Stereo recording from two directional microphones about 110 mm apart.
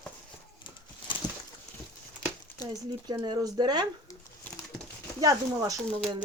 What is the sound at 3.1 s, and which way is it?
Speech, 40° right (ahead or behind).